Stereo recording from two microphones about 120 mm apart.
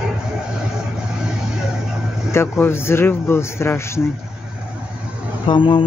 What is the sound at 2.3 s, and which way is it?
Speech, 20° left (ahead or behind).